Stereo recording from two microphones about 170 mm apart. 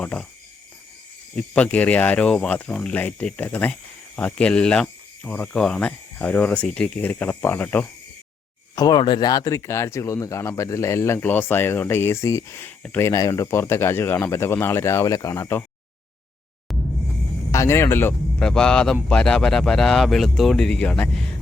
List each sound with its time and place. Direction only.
0.0 s speech: 5° left (ahead or behind)
1.4 s speech: 10° left (ahead or behind)
8.7 s speech: 25° left (ahead or behind)
16.7 s music: centre (ahead or behind)
17.5 s speech: 15° left (ahead or behind)